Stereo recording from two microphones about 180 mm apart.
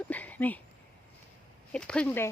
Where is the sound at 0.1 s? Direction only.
10° left (ahead or behind).